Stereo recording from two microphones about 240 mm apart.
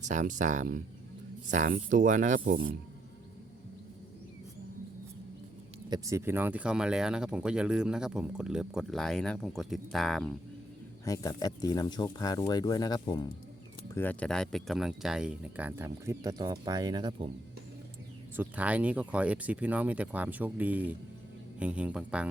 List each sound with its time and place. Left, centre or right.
0.0 s speech: right
5.9 s speech: centre
11.0 s speech: centre
18.3 s speech: centre